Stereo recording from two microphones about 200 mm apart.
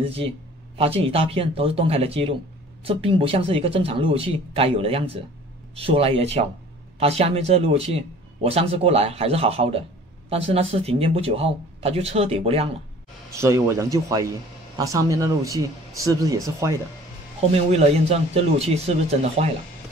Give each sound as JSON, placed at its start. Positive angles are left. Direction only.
{"t": 0.7, "sound": "a man's voice", "side_deg": -30}
{"t": 13.3, "sound": "speech", "side_deg": -15}
{"t": 17.7, "sound": "a man's voice", "side_deg": -30}